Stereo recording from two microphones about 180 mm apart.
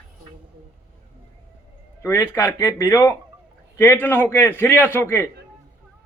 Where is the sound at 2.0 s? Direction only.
10° left (ahead or behind).